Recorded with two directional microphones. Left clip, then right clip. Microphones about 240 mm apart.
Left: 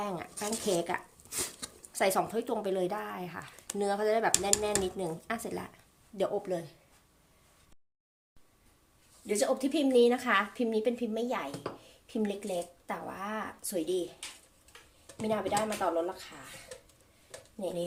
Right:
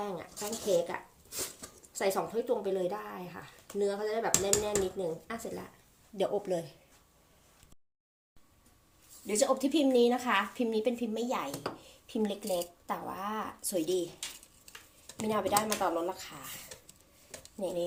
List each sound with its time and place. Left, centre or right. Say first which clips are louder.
0.0 s a sound: left 2 dB; left
1.9 s speech: left 3 dB; left
6.1 s a woman's voice: even; centre
9.2 s a woman's voice: right 1 dB; centre
15.3 s speech: right 1 dB; centre
17.6 s a woman's voice: right 1 dB; centre